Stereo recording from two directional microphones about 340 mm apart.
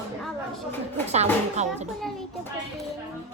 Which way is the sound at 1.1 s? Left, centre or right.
Centre.